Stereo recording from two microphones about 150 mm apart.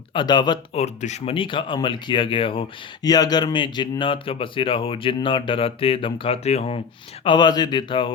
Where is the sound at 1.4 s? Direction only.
35° left (ahead or behind).